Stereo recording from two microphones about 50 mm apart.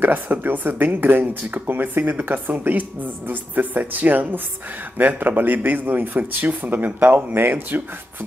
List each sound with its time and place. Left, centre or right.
0.0 s speech: right